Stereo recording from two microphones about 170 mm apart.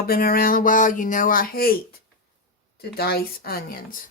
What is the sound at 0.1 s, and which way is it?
Speech, 60° left (ahead or behind).